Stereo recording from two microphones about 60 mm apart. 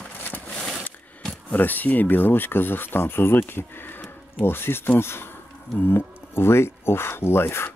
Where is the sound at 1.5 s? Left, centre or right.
Left.